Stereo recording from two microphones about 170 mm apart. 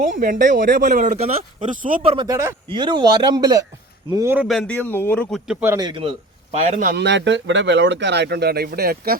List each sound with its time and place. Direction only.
0.0 s a man's voice: 55° right (ahead or behind)
0.5 s speech: 80° right
0.8 s a man's voice: 50° right (ahead or behind)
2.2 s a man's voice: 15° right (ahead or behind)
2.6 s speech: 30° right (ahead or behind)
4.4 s a man's voice: centre (ahead or behind)
5.5 s a man's voice: 10° right (ahead or behind)
5.8 s speech: 30° right (ahead or behind)
6.9 s speech: 90° right; by 9.1 s 65° right (ahead or behind)